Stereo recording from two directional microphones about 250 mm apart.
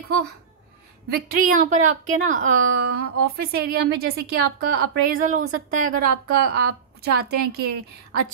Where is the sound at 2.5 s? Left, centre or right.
Right.